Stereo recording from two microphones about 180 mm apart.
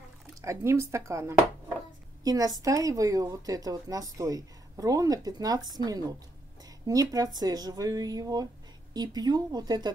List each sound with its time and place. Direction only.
0.4 s a woman's voice: 15° right (ahead or behind)